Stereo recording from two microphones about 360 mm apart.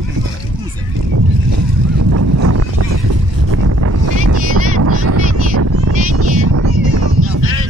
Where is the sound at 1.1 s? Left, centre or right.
Right.